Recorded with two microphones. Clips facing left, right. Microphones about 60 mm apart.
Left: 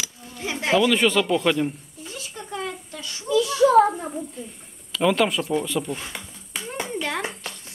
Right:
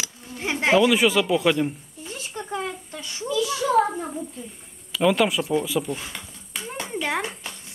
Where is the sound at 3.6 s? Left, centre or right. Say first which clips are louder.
Left 6 dB; centre.